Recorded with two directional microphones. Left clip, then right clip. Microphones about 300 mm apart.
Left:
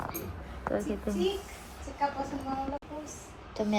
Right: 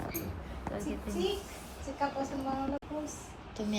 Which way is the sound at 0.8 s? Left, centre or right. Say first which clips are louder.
Left 4 dB; centre.